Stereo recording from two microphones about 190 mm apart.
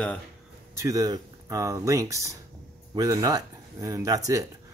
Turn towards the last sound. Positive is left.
turn(degrees=-20)  # may be behind; listen again after turning